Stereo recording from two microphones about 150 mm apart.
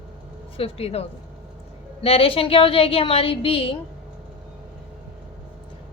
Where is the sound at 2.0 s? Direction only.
40° left (ahead or behind).